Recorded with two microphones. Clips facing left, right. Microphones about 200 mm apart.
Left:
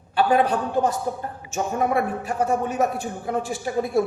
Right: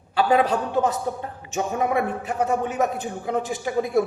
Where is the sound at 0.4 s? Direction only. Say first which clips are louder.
Even; 20° right (ahead or behind).